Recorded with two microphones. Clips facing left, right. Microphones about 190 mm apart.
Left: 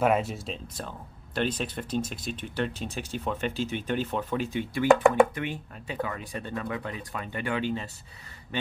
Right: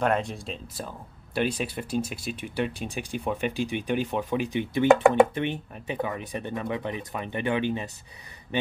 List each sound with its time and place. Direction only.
0.0 s speech: 5° left (ahead or behind)
0.7 s speech: 10° right (ahead or behind)